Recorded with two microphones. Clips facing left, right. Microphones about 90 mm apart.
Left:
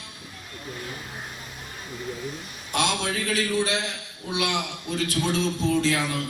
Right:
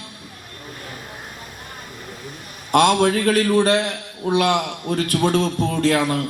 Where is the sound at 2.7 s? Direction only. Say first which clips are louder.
Right 11 dB; 55° right (ahead or behind).